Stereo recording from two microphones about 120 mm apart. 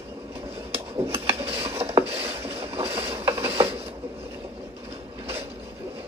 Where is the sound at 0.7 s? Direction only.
55° right (ahead or behind).